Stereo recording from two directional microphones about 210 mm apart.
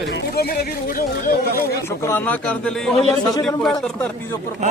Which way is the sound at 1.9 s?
10° left (ahead or behind).